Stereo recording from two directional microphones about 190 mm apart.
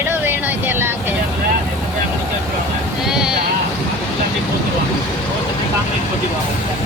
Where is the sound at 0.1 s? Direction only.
10° right (ahead or behind).